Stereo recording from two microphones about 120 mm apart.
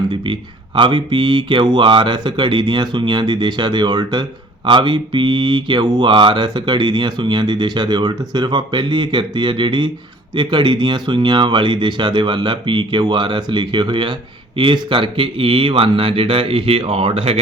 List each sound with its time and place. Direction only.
0.8 s speech: 45° right (ahead or behind)